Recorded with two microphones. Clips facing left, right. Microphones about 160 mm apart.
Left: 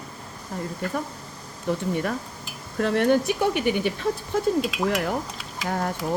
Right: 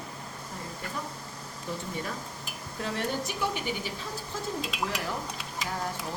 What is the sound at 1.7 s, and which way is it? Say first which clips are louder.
Speech: left 10 dB; 70° left (ahead or behind).